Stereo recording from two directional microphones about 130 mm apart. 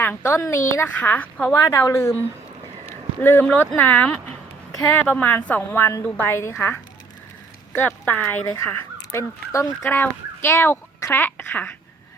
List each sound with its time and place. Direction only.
0.0 s a woman's voice: 15° left (ahead or behind)
7.8 s a woman's voice: 15° left (ahead or behind)